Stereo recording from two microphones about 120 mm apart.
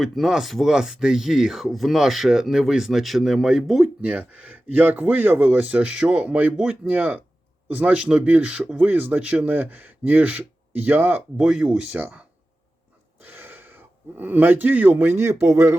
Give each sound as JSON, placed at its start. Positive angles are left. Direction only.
{"t": 0.0, "sound": "speech", "side_deg": 0}
{"t": 11.4, "sound": "speech", "side_deg": -5}
{"t": 13.2, "sound": "speech", "side_deg": -20}